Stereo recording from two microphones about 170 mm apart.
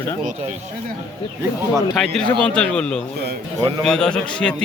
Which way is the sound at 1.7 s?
Centre (ahead or behind).